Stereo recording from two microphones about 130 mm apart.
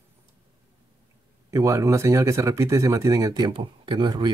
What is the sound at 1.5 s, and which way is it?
Speech, 25° right (ahead or behind).